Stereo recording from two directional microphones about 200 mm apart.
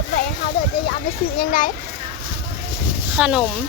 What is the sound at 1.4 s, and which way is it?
Speech, 45° left (ahead or behind).